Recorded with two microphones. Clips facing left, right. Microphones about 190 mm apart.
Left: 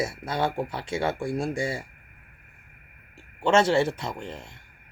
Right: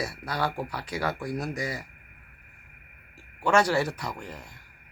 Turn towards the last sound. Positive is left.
turn(degrees=25)  # may be behind; listen again after turning